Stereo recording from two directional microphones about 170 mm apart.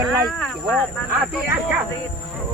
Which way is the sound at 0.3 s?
5° left (ahead or behind).